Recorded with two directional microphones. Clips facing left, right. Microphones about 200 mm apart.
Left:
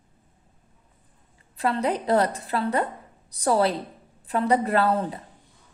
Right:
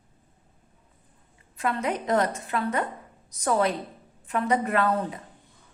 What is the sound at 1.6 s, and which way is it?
A woman's voice, 35° left (ahead or behind).